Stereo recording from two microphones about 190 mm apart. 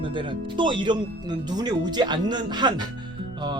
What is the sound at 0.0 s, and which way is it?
Speech, 25° right (ahead or behind).